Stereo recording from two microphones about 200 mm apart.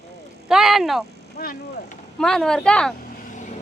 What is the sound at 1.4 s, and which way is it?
Speech, 45° left (ahead or behind).